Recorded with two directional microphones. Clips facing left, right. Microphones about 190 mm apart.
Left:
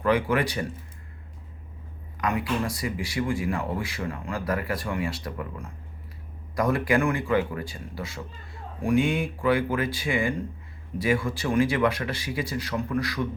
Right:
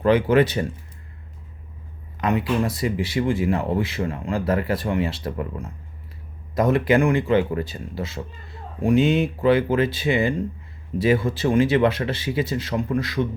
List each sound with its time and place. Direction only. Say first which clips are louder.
0.0 s speech: right 6 dB; 25° right (ahead or behind)
2.2 s speech: right 5 dB; 25° right (ahead or behind)